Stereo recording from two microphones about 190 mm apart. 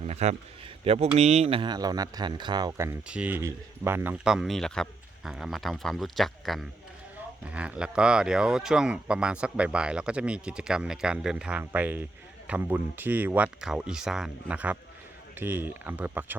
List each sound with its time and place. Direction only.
0.0 s a man's voice: 35° right (ahead or behind); by 16.4 s 10° right (ahead or behind)